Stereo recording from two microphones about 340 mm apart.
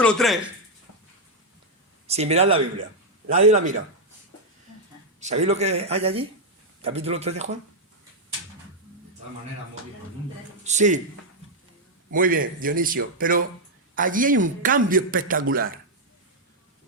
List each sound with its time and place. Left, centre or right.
0.0 s speech: centre
2.0 s a man's voice: centre
5.2 s speech: centre
10.6 s a man's voice: right
12.1 s a man's voice: right